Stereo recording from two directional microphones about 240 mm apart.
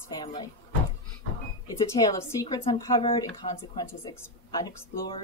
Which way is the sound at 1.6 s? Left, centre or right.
Centre.